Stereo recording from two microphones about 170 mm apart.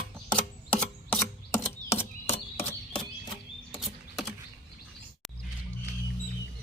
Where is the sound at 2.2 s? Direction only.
35° left (ahead or behind).